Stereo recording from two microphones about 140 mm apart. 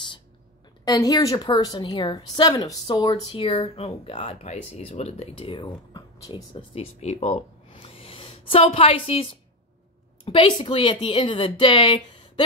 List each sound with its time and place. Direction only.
0.8 s a woman's voice: 25° left (ahead or behind)
3.3 s speech: 45° left (ahead or behind)
7.7 s a sound: 40° left (ahead or behind)
10.2 s a woman's voice: 40° left (ahead or behind)